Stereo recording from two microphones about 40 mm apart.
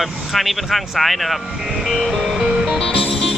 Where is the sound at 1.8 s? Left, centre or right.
Centre.